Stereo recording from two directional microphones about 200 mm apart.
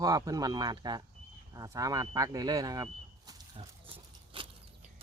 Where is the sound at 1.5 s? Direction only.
15° right (ahead or behind).